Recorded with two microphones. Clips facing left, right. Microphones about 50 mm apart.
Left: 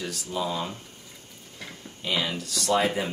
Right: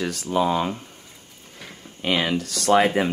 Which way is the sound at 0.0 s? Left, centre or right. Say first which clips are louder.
Right 8 dB; right.